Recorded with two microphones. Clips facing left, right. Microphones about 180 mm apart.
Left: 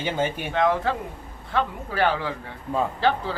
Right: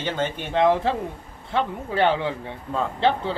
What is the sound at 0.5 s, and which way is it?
A man's voice, 25° right (ahead or behind).